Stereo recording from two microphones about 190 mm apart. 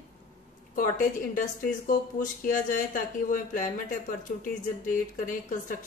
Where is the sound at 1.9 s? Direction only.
45° left (ahead or behind).